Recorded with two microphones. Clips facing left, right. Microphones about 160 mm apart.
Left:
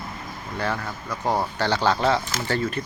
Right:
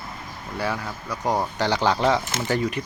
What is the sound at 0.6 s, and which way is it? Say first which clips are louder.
Speech: even; 10° right (ahead or behind).